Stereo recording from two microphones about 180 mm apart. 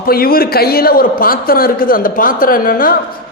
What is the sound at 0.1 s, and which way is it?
A man's voice, 55° left (ahead or behind).